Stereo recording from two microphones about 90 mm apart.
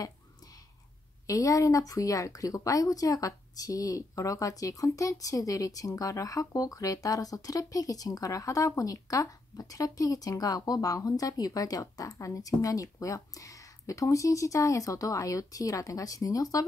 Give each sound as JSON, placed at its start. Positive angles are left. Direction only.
{"t": 1.2, "sound": "speech", "side_deg": 40}